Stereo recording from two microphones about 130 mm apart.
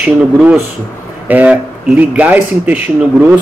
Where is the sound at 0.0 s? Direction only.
10° right (ahead or behind).